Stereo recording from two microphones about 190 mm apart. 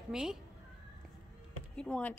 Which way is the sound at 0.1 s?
Centre (ahead or behind).